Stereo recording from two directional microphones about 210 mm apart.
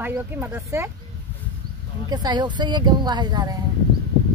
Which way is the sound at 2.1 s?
20° right (ahead or behind).